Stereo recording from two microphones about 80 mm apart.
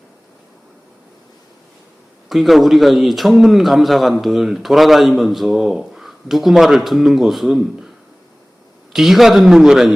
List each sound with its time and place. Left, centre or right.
2.3 s a man's voice: centre
8.9 s a man's voice: centre